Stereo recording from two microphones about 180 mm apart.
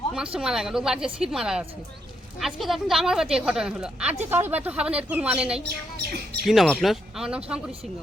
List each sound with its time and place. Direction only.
0.3 s a woman's voice: 5° right (ahead or behind)